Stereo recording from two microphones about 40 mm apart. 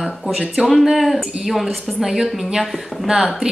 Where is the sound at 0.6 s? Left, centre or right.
Centre.